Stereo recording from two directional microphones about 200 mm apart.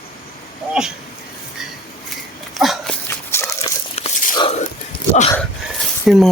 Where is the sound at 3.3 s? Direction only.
15° left (ahead or behind).